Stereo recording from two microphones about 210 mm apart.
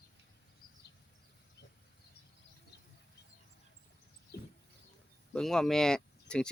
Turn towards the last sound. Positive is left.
turn(degrees=5)  # may be behind; listen again after turning